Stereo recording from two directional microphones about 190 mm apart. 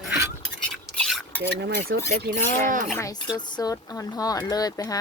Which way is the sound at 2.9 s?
20° left (ahead or behind).